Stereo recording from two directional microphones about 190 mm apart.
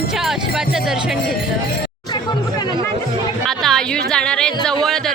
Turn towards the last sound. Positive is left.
turn(degrees=0)  # may be behind; listen again after turning